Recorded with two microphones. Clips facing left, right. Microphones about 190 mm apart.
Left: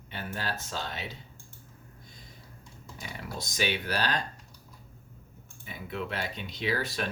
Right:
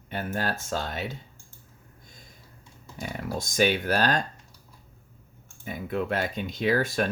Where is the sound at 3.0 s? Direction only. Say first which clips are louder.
Right 8 dB; 50° right (ahead or behind).